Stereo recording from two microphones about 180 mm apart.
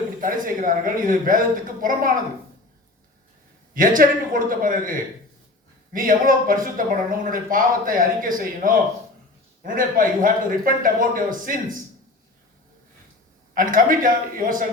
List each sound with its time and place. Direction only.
0.2 s speech: 50° right (ahead or behind)
3.8 s speech: 50° right (ahead or behind)
13.5 s speech: 50° right (ahead or behind)